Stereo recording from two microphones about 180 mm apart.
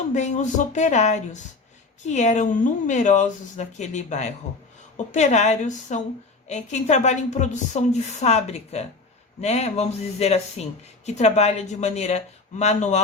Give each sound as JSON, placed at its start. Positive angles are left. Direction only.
{"t": 0.1, "sound": "a woman's voice", "side_deg": 40}